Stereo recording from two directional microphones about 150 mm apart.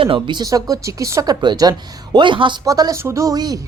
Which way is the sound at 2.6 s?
25° right (ahead or behind).